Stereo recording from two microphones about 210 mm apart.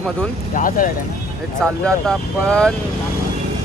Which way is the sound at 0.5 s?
40° left (ahead or behind).